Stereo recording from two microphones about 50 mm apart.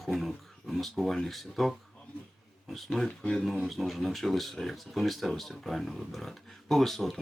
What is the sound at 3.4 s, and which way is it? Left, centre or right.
Speech, centre.